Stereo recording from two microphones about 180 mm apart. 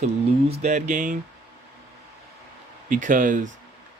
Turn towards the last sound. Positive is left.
turn(degrees=-45)  # may be behind; listen again after turning